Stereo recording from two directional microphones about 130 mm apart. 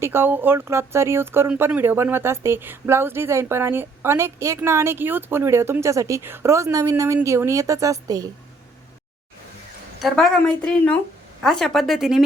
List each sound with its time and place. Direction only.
0.0 s speech: 15° right (ahead or behind)
10.0 s a woman's voice: centre (ahead or behind)